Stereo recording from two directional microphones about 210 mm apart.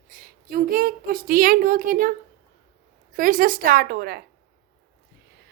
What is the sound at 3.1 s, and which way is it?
Speech, 40° right (ahead or behind).